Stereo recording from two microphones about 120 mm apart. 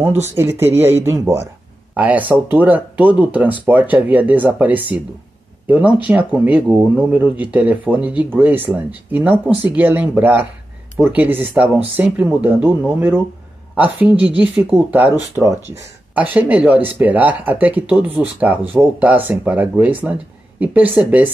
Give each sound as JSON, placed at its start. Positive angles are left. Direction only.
{"t": 0.0, "sound": "speech", "side_deg": -20}